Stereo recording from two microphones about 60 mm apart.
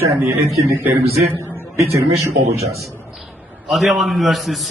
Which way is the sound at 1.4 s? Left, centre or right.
Right.